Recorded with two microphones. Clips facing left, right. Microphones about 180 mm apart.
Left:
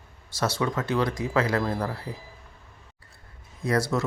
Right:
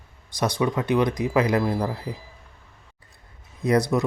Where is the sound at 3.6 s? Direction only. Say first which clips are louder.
Right 4 dB; 20° right (ahead or behind).